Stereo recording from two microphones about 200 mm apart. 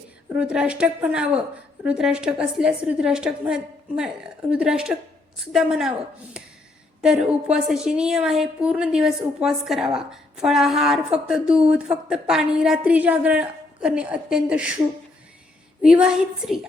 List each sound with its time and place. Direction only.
0.3 s a woman's voice: 5° right (ahead or behind)
7.0 s a woman's voice: 5° right (ahead or behind)
15.8 s a woman's voice: 5° right (ahead or behind)